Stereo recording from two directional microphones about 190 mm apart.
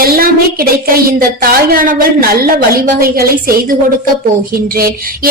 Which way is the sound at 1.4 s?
50° right (ahead or behind).